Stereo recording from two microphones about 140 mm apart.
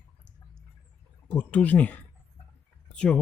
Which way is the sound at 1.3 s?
10° left (ahead or behind).